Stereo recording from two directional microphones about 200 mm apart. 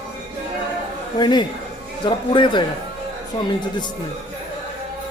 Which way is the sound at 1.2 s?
20° left (ahead or behind).